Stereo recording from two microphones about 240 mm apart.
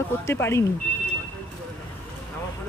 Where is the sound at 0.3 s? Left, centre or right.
Centre.